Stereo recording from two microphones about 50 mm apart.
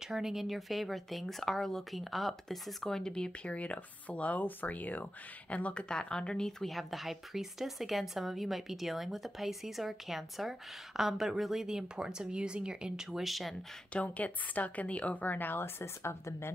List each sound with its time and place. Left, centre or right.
0.1 s speech: centre; by 5.9 s left
5.9 s speech: centre
13.9 s a woman's voice: left
15.8 s speech: left